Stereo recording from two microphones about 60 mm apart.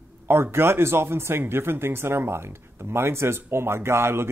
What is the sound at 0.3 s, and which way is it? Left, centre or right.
Speech, right.